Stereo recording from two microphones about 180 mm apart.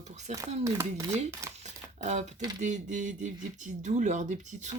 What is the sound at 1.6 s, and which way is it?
Crumpling, 40° right (ahead or behind).